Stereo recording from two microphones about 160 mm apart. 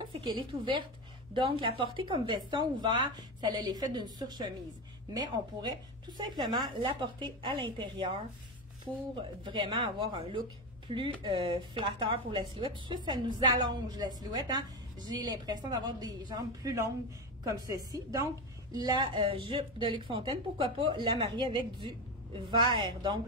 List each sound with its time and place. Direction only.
0.0 s a woman's voice: 30° right (ahead or behind)
9.4 s speech: 30° right (ahead or behind)